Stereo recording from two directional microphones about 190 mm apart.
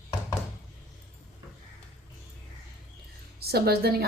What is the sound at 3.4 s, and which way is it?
Speech, 55° right (ahead or behind).